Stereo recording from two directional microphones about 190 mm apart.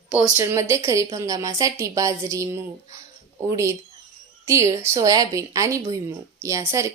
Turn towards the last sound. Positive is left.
turn(degrees=-15)  # may be behind; listen again after turning